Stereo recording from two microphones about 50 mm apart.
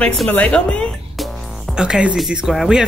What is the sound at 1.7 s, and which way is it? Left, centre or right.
Speech, centre.